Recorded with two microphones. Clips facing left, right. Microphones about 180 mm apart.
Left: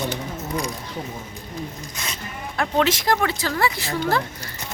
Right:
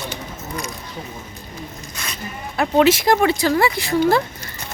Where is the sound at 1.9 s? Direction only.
20° left (ahead or behind).